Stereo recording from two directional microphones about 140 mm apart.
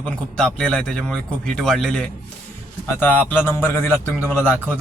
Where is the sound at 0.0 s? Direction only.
5° left (ahead or behind).